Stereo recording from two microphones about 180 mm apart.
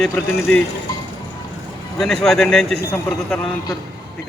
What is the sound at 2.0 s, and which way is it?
Speech, centre (ahead or behind).